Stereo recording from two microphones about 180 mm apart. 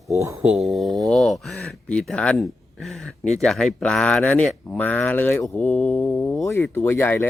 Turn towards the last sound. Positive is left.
turn(degrees=15)  # may be behind; listen again after turning